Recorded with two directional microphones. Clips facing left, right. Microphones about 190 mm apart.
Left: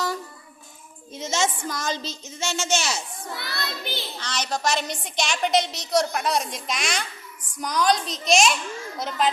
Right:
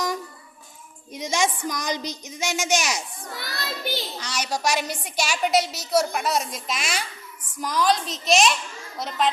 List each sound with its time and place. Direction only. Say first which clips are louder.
1.1 s a woman's voice: right 1 dB; 15° right (ahead or behind)
3.3 s child singing: right 1 dB; 40° right (ahead or behind)
4.2 s a woman's voice: left 2 dB; 10° right (ahead or behind)